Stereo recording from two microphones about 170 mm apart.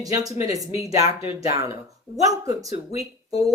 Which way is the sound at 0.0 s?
20° right (ahead or behind).